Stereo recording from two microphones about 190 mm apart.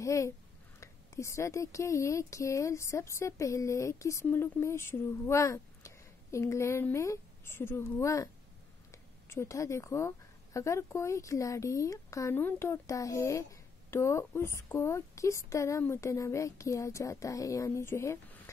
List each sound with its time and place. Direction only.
0.0 s a woman's voice: 15° left (ahead or behind)